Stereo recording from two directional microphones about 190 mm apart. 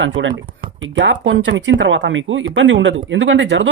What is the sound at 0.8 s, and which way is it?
Speech, 75° right (ahead or behind).